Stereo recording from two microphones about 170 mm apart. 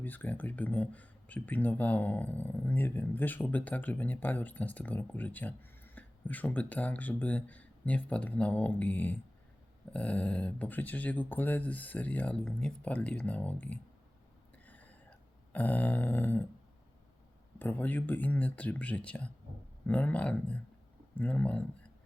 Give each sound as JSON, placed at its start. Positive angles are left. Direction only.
{"t": 0.0, "sound": "speech", "side_deg": 10}
{"t": 14.7, "sound": "a sound", "side_deg": 10}
{"t": 17.6, "sound": "speech", "side_deg": 10}